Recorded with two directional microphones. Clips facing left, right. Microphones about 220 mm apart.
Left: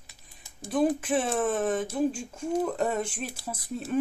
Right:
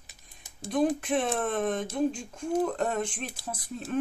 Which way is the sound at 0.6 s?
5° left (ahead or behind).